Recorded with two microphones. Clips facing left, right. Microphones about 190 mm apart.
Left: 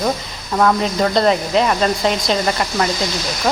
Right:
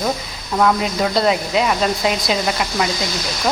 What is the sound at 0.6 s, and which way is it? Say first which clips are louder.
Speech: left 1 dB; 5° right (ahead or behind).